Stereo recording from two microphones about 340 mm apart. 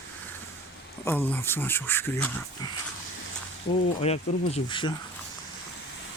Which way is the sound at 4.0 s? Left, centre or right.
Centre.